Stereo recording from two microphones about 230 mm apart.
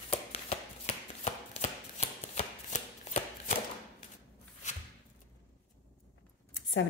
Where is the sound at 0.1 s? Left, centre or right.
Left.